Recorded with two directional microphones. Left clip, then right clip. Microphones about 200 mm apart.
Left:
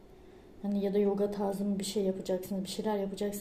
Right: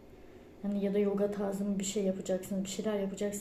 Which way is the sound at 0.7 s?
20° left (ahead or behind).